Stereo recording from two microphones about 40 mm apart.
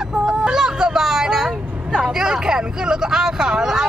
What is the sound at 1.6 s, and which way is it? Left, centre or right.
Vehicle, right.